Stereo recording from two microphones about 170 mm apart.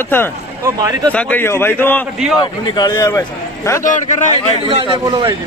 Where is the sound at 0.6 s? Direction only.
20° right (ahead or behind).